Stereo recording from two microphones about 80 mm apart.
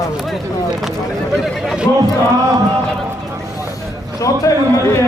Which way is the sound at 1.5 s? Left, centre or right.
Centre.